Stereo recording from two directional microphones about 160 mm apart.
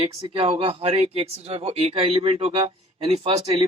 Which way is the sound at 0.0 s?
35° right (ahead or behind).